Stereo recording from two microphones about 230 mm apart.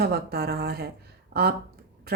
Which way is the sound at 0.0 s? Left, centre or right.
Right.